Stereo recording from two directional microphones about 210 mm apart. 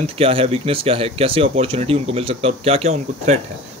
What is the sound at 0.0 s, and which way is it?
Speech, 25° right (ahead or behind).